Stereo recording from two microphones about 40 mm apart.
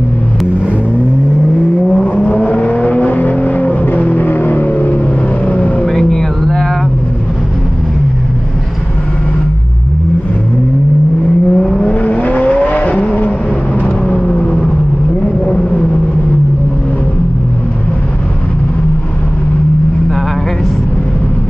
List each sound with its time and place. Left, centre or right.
2.0 s vehicle: left
5.5 s vehicle: left
5.9 s vehicle: centre
11.5 s vehicle: centre
11.8 s vehicle: left
14.3 s vehicle: left